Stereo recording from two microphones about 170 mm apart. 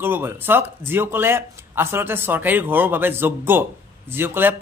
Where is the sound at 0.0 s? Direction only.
10° right (ahead or behind).